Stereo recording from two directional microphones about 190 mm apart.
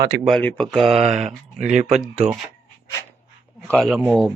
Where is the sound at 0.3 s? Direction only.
5° left (ahead or behind).